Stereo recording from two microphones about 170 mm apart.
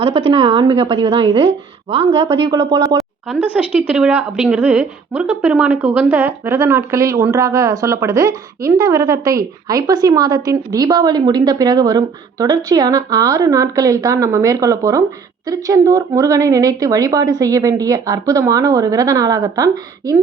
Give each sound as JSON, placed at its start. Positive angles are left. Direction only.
{"t": 0.0, "sound": "a woman's voice", "side_deg": -30}
{"t": 3.0, "sound": "a woman's voice", "side_deg": -5}